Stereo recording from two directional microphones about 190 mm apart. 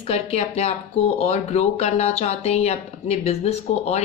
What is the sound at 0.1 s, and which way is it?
A woman's voice, 35° left (ahead or behind).